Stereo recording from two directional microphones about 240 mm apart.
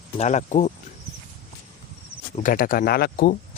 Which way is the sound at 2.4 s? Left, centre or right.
Left.